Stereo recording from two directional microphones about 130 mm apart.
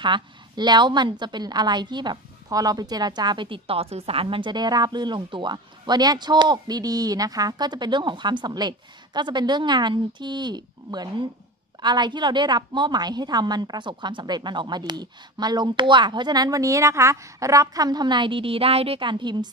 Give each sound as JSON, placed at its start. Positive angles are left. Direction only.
{"t": 0.0, "sound": "a woman's voice", "side_deg": -35}